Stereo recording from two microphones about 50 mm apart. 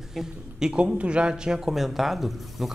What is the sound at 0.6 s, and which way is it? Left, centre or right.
A man's voice, centre.